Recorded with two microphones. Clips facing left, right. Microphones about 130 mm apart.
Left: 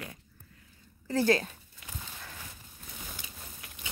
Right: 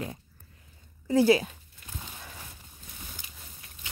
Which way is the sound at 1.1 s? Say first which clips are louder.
Right 5 dB; 10° right (ahead or behind).